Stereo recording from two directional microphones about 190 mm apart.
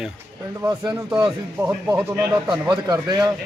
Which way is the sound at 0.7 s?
15° right (ahead or behind).